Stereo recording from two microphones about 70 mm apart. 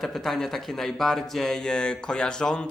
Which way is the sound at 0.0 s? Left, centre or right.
Centre.